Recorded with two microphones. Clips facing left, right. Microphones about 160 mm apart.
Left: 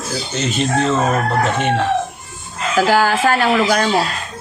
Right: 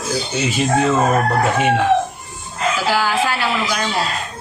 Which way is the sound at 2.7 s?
45° left (ahead or behind).